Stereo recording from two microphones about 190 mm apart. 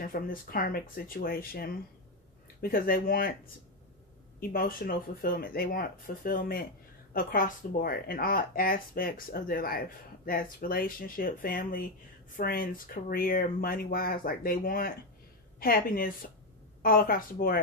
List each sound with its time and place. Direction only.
0.0 s speech: 50° left (ahead or behind)
4.4 s speech: 50° left (ahead or behind)